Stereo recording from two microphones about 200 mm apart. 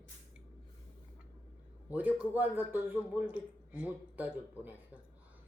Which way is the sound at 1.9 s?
5° right (ahead or behind).